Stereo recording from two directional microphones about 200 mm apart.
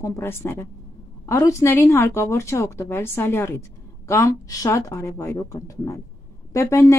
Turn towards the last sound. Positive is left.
turn(degrees=15)  # may be behind; listen again after turning